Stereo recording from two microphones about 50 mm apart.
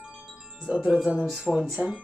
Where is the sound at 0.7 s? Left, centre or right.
Centre.